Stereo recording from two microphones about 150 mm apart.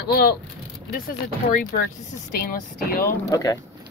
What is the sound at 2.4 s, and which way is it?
Speech, 70° left (ahead or behind).